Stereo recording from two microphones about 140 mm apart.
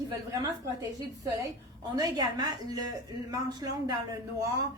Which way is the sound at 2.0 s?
25° right (ahead or behind).